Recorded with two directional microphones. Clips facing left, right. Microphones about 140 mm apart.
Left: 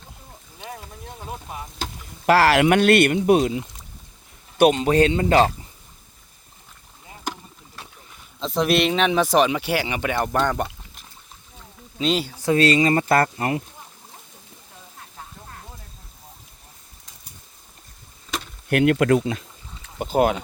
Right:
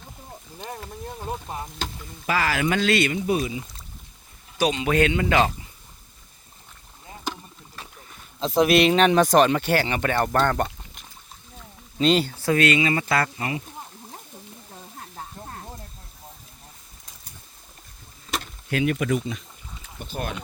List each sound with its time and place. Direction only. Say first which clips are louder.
2.2 s speech: left 8 dB; 75° left (ahead or behind)
4.5 s speech: left 7 dB; 55° left (ahead or behind)
4.8 s speech: left 3 dB; 35° left (ahead or behind)
8.4 s speech: right 2 dB; 5° right (ahead or behind)
12.5 s speech: left 4 dB; 35° left (ahead or behind)
13.3 s speech: left 5 dB; 55° left (ahead or behind)
18.7 s speech: left 6 dB; 70° left (ahead or behind); by 20.3 s 90° left